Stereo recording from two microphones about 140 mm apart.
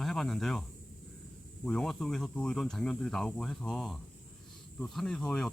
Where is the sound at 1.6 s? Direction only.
5° left (ahead or behind).